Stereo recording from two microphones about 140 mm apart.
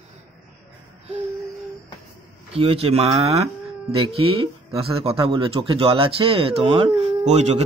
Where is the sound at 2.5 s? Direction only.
45° right (ahead or behind).